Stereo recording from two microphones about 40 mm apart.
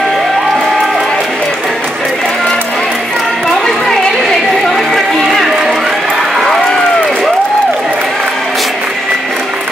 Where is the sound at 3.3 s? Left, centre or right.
Centre.